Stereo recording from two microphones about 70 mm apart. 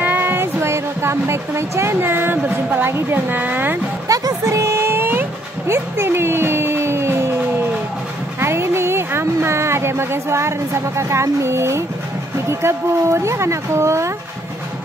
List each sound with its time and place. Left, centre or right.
0.0 s speech: right
4.1 s a sound: right
5.7 s speech: right
8.4 s a woman's voice: right